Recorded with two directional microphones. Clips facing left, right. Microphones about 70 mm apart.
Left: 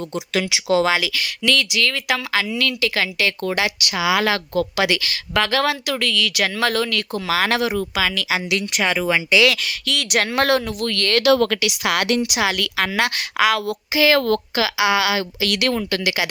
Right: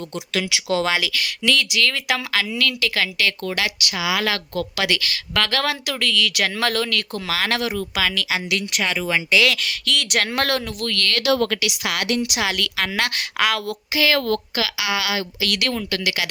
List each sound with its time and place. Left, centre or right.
0.3 s a woman's voice: centre; by 4.3 s left
4.5 s a woman's voice: centre
7.3 s a woman's voice: centre
8.3 s a woman's voice: centre
11.2 s speech: left
11.6 s a woman's voice: left
12.3 s a woman's voice: centre
13.9 s a woman's voice: left
14.2 s a woman's voice: left